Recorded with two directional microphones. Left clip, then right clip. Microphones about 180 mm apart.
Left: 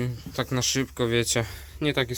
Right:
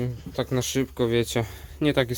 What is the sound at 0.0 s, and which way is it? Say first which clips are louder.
Speech: right 1 dB; centre (ahead or behind).